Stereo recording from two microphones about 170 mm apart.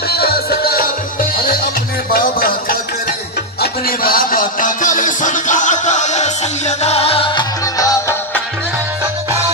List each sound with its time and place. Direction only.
0.1 s music: 65° left (ahead or behind)
2.1 s music: 60° left (ahead or behind); by 8.2 s 20° left (ahead or behind)